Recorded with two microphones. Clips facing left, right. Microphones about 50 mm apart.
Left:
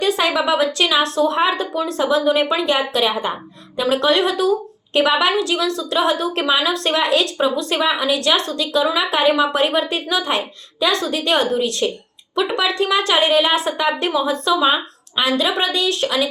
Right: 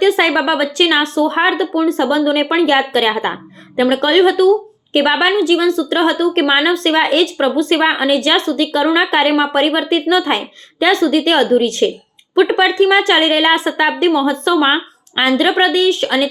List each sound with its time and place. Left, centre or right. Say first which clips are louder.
0.0 s speech: right 5 dB; right